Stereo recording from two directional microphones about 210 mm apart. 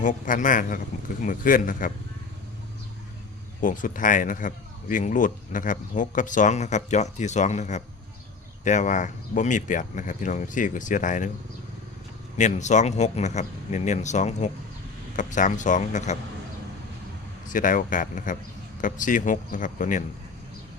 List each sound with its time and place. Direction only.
0.0 s speech: 35° left (ahead or behind)
3.6 s speech: 40° left (ahead or behind)
12.4 s speech: 35° left (ahead or behind)
17.5 s speech: 40° left (ahead or behind)